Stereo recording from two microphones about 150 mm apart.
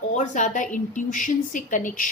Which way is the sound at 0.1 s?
55° left (ahead or behind).